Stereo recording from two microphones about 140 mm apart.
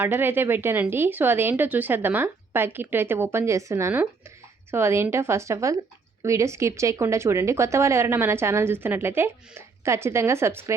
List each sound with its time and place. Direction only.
0.0 s a woman's voice: 15° right (ahead or behind)